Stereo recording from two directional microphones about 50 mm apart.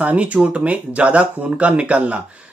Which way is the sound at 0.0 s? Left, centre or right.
Right.